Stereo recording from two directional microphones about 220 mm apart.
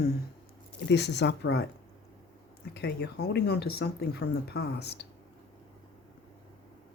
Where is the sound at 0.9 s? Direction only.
50° left (ahead or behind).